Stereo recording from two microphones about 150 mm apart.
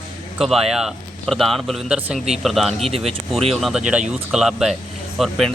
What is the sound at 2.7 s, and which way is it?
Speech, 40° right (ahead or behind).